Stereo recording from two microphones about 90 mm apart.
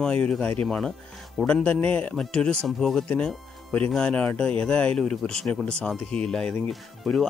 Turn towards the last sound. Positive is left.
turn(degrees=5)  # may be behind; listen again after turning